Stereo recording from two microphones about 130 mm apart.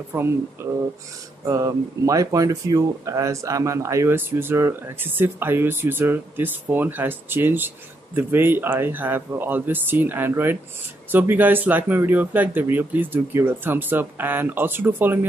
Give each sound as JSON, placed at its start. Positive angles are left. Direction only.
{"t": 0.1, "sound": "speech", "side_deg": -20}